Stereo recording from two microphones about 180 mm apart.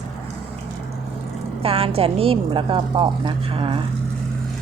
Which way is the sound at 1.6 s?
30° right (ahead or behind).